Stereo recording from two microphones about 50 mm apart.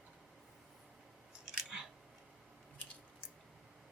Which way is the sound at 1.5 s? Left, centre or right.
Centre.